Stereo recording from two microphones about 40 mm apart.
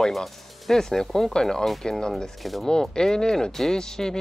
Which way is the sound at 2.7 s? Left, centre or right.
Centre.